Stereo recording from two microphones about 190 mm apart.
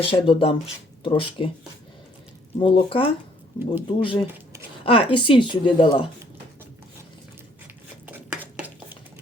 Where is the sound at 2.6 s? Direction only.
25° left (ahead or behind).